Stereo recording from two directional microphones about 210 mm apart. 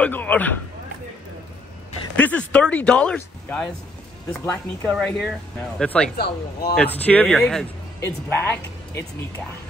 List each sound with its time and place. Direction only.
0.0 s a man's voice: 5° left (ahead or behind)
2.1 s speech: 5° left (ahead or behind)
6.1 s speech: 50° left (ahead or behind)
6.8 s speech: 5° left (ahead or behind)